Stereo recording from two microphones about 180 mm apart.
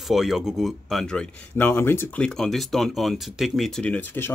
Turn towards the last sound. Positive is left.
turn(degrees=10)  # may be behind; listen again after turning